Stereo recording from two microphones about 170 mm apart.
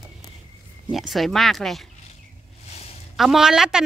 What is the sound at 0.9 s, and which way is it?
Speech, centre (ahead or behind).